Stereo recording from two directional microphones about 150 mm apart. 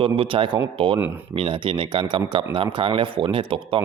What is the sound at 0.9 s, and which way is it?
Speech, 15° right (ahead or behind).